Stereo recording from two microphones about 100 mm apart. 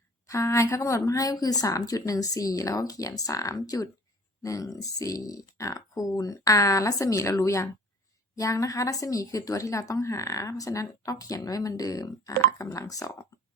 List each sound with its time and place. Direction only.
0.3 s speech: 30° left (ahead or behind)